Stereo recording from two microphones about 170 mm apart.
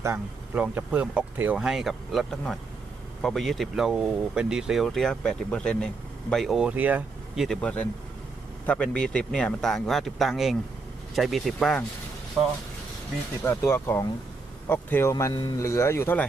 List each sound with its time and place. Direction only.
0.0 s speech: 10° right (ahead or behind)
13.4 s speech: 15° left (ahead or behind)
15.1 s speech: 25° left (ahead or behind)